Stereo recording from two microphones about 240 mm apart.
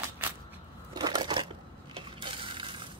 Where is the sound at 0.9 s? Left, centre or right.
Centre.